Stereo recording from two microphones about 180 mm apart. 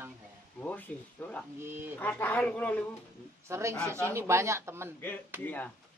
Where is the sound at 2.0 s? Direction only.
10° left (ahead or behind).